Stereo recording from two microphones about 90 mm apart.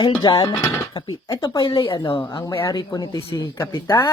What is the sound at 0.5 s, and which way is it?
Speech, 25° left (ahead or behind).